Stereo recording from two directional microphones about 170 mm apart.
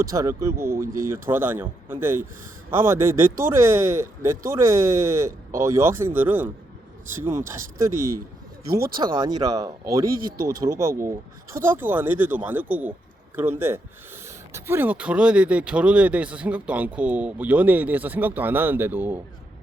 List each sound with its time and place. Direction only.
0.0 s speech: 20° right (ahead or behind)
9.0 s speech: 30° right (ahead or behind); by 19.2 s 10° right (ahead or behind)